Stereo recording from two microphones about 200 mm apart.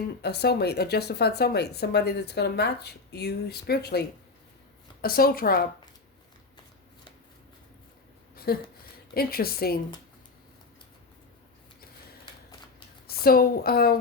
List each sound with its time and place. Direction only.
0.2 s a woman's voice: 55° left (ahead or behind)
5.0 s a woman's voice: 45° left (ahead or behind)
8.5 s a woman's voice: 50° left (ahead or behind)
13.1 s a woman's voice: 50° left (ahead or behind)